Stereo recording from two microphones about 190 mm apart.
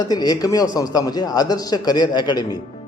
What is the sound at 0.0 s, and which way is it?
A man's voice, 20° left (ahead or behind).